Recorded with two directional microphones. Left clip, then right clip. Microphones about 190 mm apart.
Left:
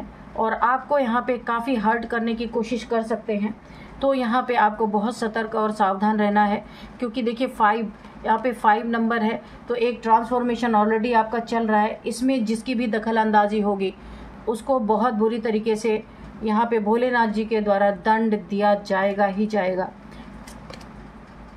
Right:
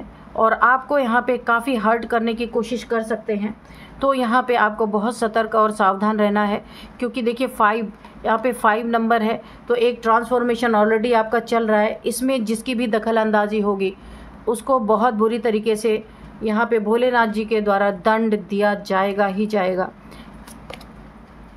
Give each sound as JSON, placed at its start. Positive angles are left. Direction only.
{"t": 0.4, "sound": "speech", "side_deg": -30}
{"t": 4.0, "sound": "speech", "side_deg": -30}